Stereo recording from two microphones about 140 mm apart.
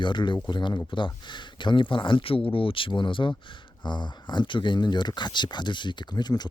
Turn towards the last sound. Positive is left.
turn(degrees=30)  # may be behind; listen again after turning